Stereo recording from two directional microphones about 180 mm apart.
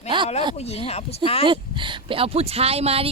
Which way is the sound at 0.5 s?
35° left (ahead or behind).